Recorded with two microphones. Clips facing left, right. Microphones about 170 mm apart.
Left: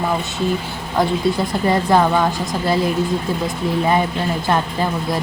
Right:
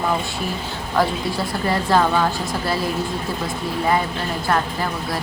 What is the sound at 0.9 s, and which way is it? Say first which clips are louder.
Speech: left 3 dB; 20° left (ahead or behind).